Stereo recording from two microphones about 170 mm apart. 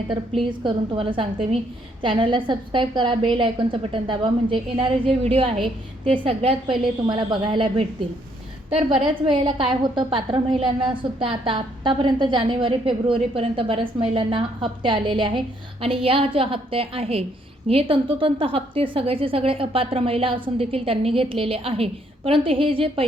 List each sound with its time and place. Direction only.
0.6 s a woman's voice: 30° right (ahead or behind)